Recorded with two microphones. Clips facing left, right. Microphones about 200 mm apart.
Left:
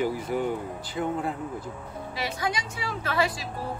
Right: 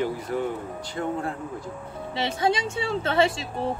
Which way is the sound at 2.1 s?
25° right (ahead or behind).